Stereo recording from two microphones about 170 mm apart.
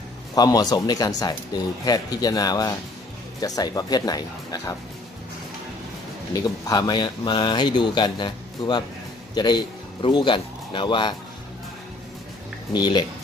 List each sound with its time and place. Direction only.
0.3 s speech: 20° left (ahead or behind)
6.3 s speech: 20° left (ahead or behind)
12.7 s speech: 25° left (ahead or behind)